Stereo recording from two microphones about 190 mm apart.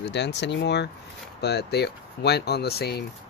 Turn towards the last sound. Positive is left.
turn(degrees=55)  # may be behind; listen again after turning